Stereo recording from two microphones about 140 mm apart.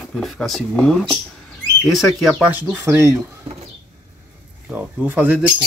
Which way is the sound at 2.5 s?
15° right (ahead or behind).